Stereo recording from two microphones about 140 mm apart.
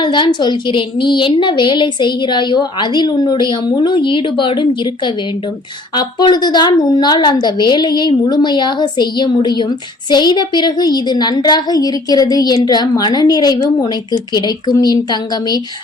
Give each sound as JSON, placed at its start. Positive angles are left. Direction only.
{"t": 0.0, "sound": "a woman's voice", "side_deg": 35}